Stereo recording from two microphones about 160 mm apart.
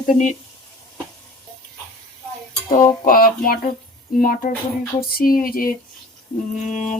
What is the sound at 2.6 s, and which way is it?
Cutlery, 60° left (ahead or behind).